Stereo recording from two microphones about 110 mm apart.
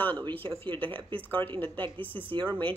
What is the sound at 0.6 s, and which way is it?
Speech, 50° right (ahead or behind).